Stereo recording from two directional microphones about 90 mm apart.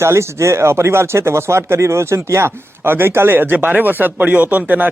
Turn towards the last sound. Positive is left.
turn(degrees=-20)  # may be behind; listen again after turning